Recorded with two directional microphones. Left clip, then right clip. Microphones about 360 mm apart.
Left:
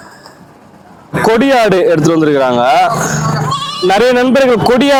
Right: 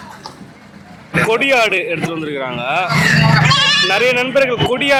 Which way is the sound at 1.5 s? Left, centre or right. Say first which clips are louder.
Left 5 dB; left.